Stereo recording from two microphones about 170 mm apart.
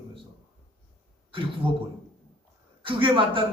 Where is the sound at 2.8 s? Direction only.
30° right (ahead or behind).